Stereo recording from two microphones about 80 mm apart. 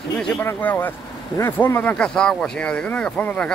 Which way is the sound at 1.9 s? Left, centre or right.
Centre.